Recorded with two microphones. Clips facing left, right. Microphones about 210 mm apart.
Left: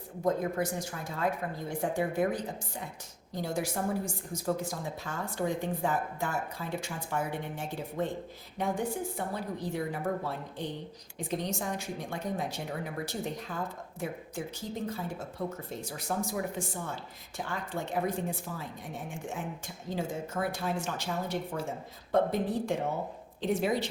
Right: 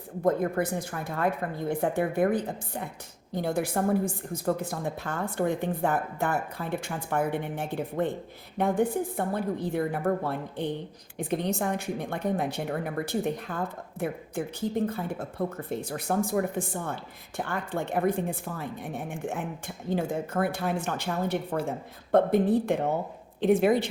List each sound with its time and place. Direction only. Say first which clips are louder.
0.3 s speech: right 4 dB; 60° right (ahead or behind)